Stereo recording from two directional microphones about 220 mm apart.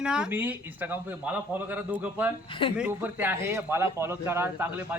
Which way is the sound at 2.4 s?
25° left (ahead or behind).